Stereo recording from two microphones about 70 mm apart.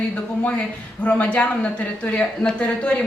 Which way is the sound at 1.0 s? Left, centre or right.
Centre.